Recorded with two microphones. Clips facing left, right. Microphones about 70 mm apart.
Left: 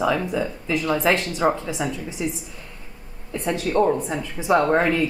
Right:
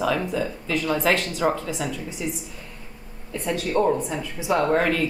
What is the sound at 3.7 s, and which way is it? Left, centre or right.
A woman's voice, centre.